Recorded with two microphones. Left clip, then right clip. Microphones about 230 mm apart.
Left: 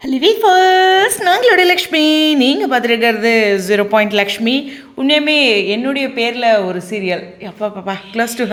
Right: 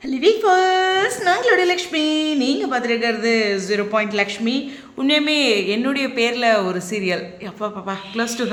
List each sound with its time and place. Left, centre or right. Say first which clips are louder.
0.1 s a woman's voice: left 5 dB; left
4.9 s speech: left 5 dB; centre
7.6 s a woman's voice: left 5 dB; centre